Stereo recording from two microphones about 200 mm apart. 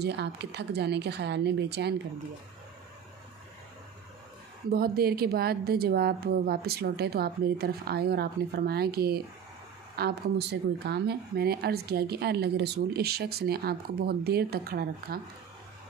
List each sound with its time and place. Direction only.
0.0 s speech: 55° right (ahead or behind)
4.6 s speech: 50° right (ahead or behind)